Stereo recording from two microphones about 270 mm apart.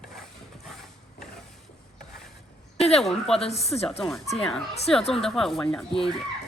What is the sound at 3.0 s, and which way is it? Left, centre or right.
Speech, centre.